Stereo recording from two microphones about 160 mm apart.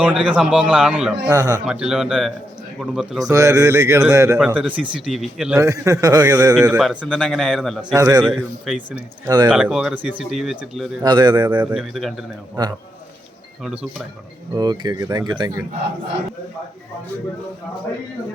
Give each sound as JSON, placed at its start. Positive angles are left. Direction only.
{"t": 0.2, "sound": "a man's voice", "side_deg": -5}
{"t": 1.3, "sound": "speech", "side_deg": -20}
{"t": 1.6, "sound": "a man's voice", "side_deg": -5}
{"t": 3.2, "sound": "speech", "side_deg": -20}
{"t": 4.4, "sound": "a man's voice", "side_deg": -10}
{"t": 5.5, "sound": "speech", "side_deg": -20}
{"t": 6.6, "sound": "a man's voice", "side_deg": -5}
{"t": 7.9, "sound": "speech", "side_deg": -20}
{"t": 8.2, "sound": "speech", "side_deg": -5}
{"t": 11.0, "sound": "speech", "side_deg": -25}
{"t": 11.4, "sound": "a man's voice", "side_deg": -10}
{"t": 12.6, "sound": "speech", "side_deg": -25}
{"t": 14.5, "sound": "speech", "side_deg": -25}